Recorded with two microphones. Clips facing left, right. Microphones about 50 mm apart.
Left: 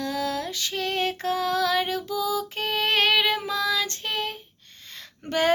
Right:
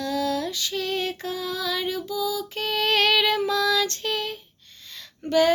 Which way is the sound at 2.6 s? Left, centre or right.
Left.